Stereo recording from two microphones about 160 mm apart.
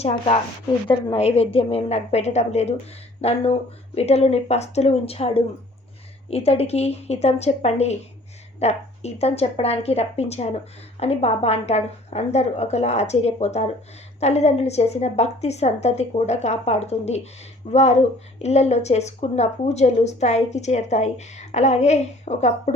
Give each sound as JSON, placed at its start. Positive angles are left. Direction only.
{"t": 0.0, "sound": "a woman's voice", "side_deg": 40}